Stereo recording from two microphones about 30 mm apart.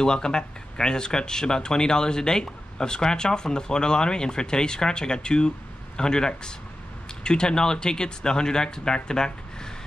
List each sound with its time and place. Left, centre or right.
0.0 s speech: left